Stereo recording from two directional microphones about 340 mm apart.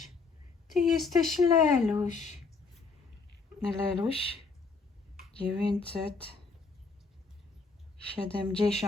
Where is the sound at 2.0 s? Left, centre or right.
Left.